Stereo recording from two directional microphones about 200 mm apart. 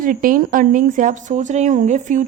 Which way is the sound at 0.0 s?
45° right (ahead or behind).